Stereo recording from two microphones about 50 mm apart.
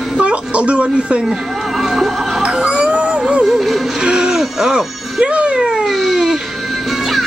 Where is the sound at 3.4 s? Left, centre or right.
Centre.